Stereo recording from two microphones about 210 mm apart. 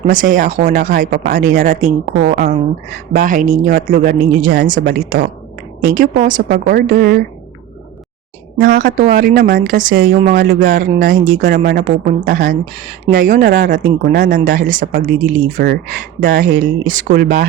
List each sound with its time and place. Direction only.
0.1 s speech: 40° right (ahead or behind)
8.5 s speech: 50° right (ahead or behind)